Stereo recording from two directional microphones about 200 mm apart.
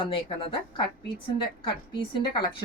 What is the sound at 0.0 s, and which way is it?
Speech, 25° left (ahead or behind).